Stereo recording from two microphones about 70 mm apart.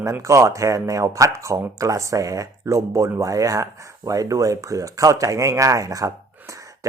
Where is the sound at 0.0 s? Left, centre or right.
Right.